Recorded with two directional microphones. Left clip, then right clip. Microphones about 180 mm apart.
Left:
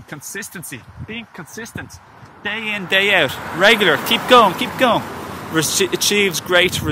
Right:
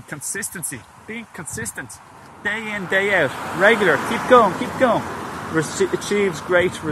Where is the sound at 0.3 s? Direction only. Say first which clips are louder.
Even; 20° left (ahead or behind).